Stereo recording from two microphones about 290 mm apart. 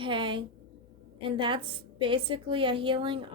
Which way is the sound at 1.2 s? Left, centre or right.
Centre.